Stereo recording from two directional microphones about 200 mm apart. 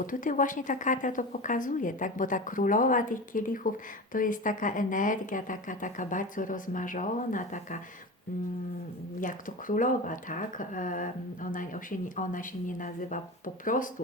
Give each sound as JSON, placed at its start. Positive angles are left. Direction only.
{"t": 0.0, "sound": "a woman's voice", "side_deg": 40}
{"t": 9.2, "sound": "a woman's voice", "side_deg": 40}